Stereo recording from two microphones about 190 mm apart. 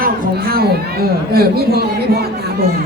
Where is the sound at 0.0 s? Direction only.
50° right (ahead or behind).